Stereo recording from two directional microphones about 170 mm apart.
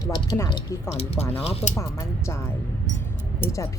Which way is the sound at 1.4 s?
35° left (ahead or behind).